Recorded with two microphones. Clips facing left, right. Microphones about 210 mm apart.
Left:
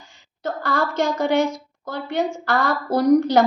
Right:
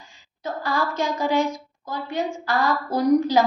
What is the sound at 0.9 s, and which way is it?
Speech, 75° left (ahead or behind).